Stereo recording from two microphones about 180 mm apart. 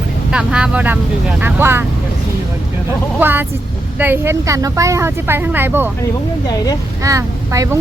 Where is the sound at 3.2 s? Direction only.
10° right (ahead or behind).